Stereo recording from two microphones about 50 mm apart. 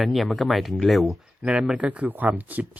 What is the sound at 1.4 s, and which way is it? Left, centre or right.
Speech, right.